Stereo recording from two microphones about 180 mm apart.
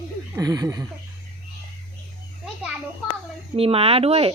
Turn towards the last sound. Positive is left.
turn(degrees=-35)  # may be behind; listen again after turning